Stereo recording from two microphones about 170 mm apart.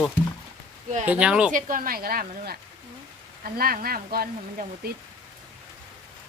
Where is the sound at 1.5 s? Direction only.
55° right (ahead or behind).